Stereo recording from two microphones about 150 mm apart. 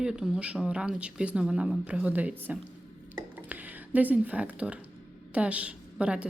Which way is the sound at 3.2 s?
10° right (ahead or behind).